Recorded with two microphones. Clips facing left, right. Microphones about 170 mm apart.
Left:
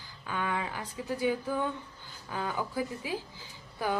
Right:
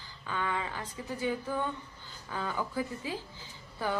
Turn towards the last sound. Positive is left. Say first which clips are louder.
# left 2 dB
turn(degrees=15)  # may be behind; listen again after turning